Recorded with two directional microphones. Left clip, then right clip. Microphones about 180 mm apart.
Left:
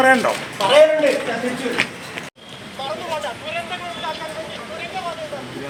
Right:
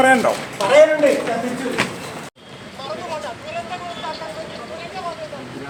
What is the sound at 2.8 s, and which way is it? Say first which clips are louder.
Vehicle: left 2 dB; 40° left (ahead or behind).